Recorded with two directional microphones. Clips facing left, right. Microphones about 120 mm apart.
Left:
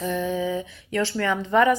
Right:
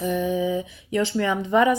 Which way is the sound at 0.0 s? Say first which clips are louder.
Right 2 dB; 15° right (ahead or behind).